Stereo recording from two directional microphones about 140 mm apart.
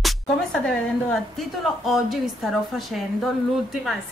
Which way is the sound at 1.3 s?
Centre (ahead or behind).